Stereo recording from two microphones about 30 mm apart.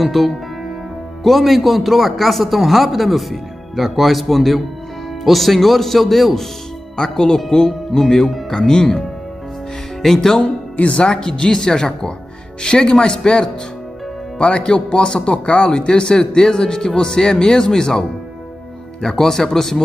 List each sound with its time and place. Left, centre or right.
0.0 s speech: centre
7.0 s speech: centre
10.0 s speech: centre
10.4 s speech: left
11.1 s speech: left